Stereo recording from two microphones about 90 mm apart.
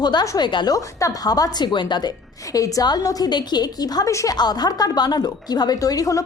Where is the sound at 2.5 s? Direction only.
40° left (ahead or behind).